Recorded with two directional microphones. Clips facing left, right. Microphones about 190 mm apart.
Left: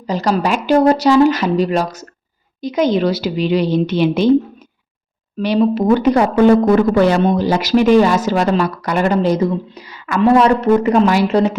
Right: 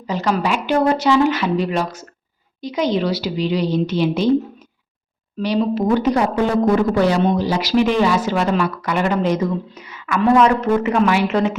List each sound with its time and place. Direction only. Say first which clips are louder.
0.1 s a woman's voice: left 3 dB; 40° left (ahead or behind); by 4.3 s 60° left (ahead or behind)
5.4 s speech: left 4 dB; 60° left (ahead or behind); by 11.5 s 35° left (ahead or behind)